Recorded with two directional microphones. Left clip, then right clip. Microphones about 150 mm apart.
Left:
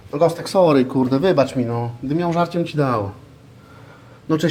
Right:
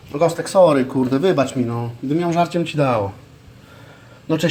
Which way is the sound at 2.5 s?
5° right (ahead or behind).